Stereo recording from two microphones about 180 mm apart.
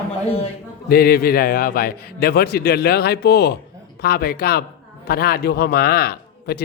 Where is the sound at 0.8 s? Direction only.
60° left (ahead or behind).